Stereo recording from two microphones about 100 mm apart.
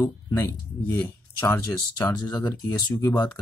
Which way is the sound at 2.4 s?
40° left (ahead or behind).